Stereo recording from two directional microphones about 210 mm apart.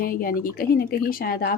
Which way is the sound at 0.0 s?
45° left (ahead or behind).